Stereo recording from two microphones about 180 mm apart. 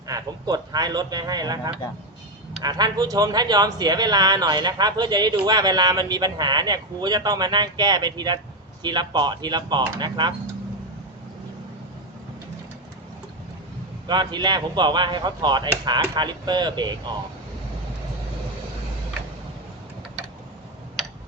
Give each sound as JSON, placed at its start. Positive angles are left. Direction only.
{"t": 0.1, "sound": "speech", "side_deg": -20}
{"t": 14.1, "sound": "speech", "side_deg": -25}